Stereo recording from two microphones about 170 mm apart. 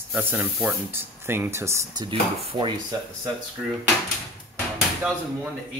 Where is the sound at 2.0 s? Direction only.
30° right (ahead or behind).